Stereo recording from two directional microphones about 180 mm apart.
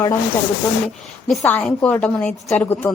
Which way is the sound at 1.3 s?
5° left (ahead or behind).